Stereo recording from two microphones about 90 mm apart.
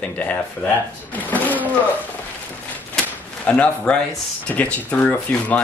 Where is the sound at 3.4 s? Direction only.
15° left (ahead or behind).